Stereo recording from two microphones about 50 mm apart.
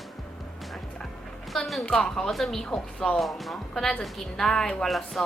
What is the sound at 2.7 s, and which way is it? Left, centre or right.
Speech, centre.